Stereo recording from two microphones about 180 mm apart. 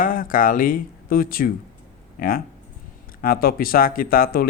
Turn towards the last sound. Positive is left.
turn(degrees=55)  # may be behind; listen again after turning